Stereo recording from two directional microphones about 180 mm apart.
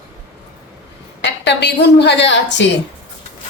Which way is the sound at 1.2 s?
80° left.